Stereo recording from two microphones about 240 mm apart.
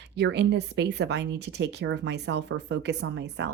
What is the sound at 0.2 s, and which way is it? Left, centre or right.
Speech, right.